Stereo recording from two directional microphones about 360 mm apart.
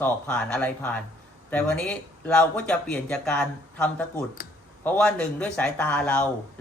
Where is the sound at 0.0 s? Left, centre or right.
Centre.